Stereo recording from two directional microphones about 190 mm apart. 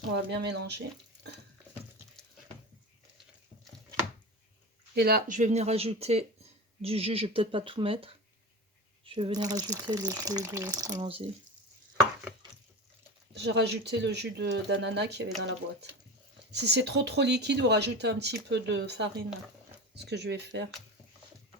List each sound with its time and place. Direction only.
0.1 s speech: 60° right (ahead or behind)
4.9 s speech: 55° right (ahead or behind); by 11.3 s 30° right (ahead or behind)
13.3 s speech: 65° right (ahead or behind)
16.5 s speech: 60° right (ahead or behind)